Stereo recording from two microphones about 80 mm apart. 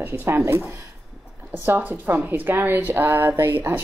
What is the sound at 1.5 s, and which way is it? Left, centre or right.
A woman's voice, right.